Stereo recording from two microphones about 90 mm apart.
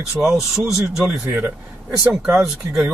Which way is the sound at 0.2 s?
Centre (ahead or behind).